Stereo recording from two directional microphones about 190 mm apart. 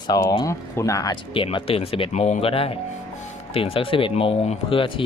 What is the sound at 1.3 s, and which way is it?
Speech, 25° left (ahead or behind).